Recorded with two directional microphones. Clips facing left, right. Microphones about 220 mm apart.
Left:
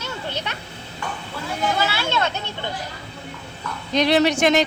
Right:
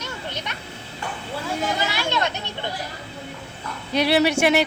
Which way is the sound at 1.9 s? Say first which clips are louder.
Left 1 dB; 15° right (ahead or behind).